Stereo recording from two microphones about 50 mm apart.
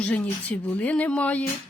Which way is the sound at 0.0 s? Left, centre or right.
Left.